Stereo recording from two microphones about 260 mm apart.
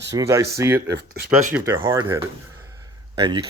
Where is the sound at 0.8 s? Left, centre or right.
Right.